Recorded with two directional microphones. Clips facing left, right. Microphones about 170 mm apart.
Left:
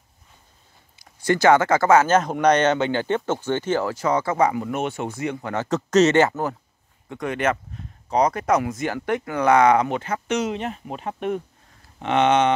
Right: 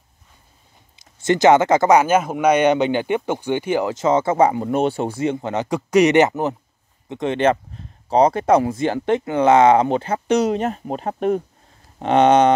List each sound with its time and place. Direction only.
0.9 s speech: 20° right (ahead or behind); by 12.5 s 40° right (ahead or behind)